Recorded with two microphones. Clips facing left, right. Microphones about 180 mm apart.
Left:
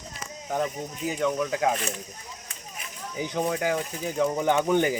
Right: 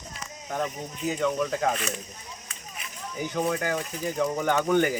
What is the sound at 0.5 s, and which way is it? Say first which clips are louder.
Speech: left 2 dB; 10° left (ahead or behind).